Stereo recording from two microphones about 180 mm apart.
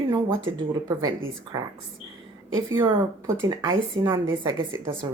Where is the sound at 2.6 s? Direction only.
20° right (ahead or behind).